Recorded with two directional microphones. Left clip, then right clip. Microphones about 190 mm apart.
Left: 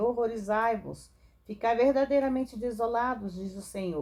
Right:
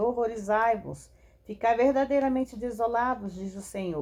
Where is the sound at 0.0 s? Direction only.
40° right (ahead or behind).